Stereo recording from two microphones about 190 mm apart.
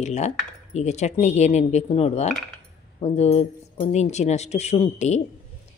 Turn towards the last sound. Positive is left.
turn(degrees=35)  # may be behind; listen again after turning